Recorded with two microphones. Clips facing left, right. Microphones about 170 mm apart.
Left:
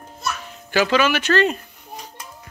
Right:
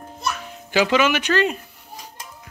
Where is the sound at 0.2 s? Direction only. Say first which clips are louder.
Right 1 dB; 15° right (ahead or behind).